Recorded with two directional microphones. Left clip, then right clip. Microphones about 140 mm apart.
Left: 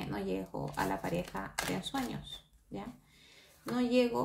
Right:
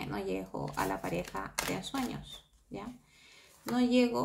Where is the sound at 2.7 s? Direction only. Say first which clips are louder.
Right 1 dB; 20° right (ahead or behind).